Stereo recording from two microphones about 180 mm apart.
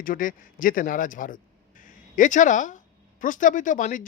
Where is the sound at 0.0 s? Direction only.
50° left (ahead or behind).